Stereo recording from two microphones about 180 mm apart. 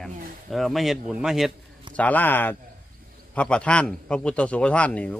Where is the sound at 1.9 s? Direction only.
10° left (ahead or behind).